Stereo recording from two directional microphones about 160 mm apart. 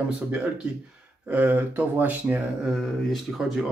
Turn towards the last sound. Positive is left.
turn(degrees=0)  # may be behind; listen again after turning